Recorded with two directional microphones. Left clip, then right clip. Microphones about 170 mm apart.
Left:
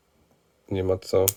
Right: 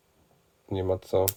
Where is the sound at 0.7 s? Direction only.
25° left (ahead or behind).